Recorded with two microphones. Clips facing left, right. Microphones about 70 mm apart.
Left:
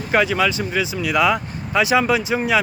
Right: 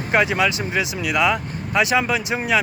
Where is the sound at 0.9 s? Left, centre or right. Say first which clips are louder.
Left 3 dB; centre.